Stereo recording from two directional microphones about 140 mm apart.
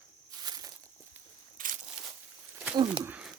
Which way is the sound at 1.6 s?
75° right (ahead or behind).